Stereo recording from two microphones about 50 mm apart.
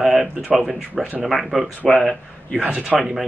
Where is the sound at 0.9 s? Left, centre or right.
Right.